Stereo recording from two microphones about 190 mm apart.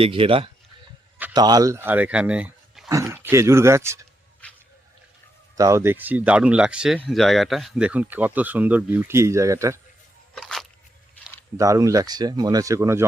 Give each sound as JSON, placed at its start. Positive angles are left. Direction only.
{"t": 0.0, "sound": "speech", "side_deg": -30}
{"t": 5.5, "sound": "speech", "side_deg": -15}
{"t": 10.3, "sound": "a sound", "side_deg": 0}
{"t": 11.5, "sound": "speech", "side_deg": -15}